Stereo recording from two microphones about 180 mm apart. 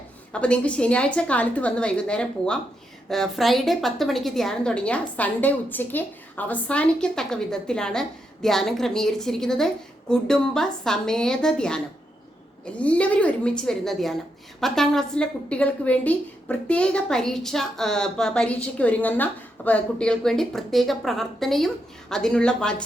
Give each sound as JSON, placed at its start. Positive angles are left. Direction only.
{"t": 0.3, "sound": "a woman's voice", "side_deg": 5}